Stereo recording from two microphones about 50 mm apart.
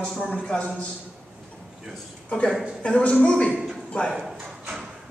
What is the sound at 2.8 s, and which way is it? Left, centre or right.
Speech, left.